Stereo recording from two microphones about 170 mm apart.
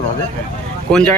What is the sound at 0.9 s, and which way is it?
Speech, 5° left (ahead or behind).